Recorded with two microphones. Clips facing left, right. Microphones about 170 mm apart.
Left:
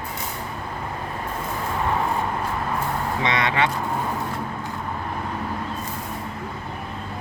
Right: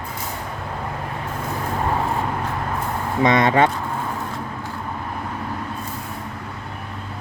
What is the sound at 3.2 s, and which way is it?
Speech, 45° right (ahead or behind).